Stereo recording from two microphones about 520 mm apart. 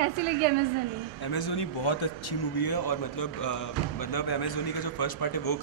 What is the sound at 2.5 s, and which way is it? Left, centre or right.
Speech, left.